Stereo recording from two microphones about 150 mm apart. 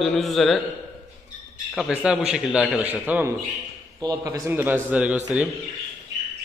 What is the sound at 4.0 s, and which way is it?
A man's voice, 20° right (ahead or behind).